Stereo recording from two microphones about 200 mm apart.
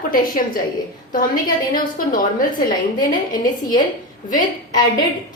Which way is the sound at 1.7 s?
45° left (ahead or behind).